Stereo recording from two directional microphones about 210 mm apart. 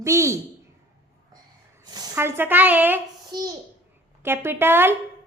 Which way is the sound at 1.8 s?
20° right (ahead or behind).